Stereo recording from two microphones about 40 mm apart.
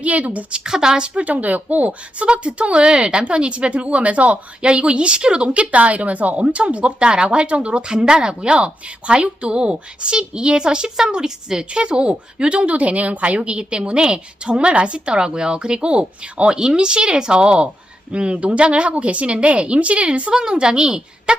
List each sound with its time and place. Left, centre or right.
0.0 s speech: right
0.5 s a woman's voice: centre
1.2 s a woman's voice: right
20.3 s a woman's voice: centre